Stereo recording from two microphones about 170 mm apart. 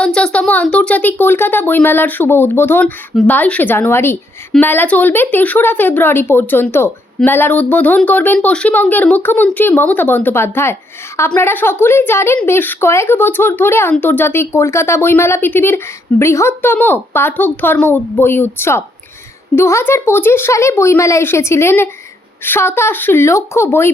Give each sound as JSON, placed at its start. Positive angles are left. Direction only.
{"t": 0.0, "sound": "a woman's voice", "side_deg": 5}